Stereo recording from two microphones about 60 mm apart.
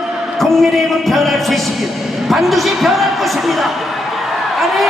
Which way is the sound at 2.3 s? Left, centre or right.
Centre.